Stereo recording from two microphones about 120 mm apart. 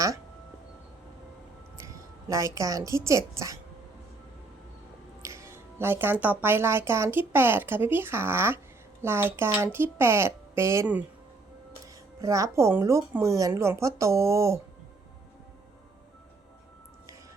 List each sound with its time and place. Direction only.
1.8 s a woman's voice: 25° right (ahead or behind)
5.2 s music: 25° right (ahead or behind)
6.4 s speech: 20° right (ahead or behind)
12.2 s speech: 25° right (ahead or behind)